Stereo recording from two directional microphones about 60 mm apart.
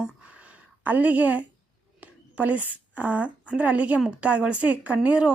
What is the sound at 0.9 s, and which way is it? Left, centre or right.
A woman's voice, right.